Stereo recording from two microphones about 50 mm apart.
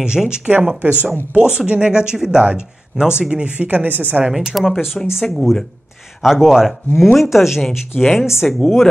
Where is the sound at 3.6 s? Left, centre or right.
Right.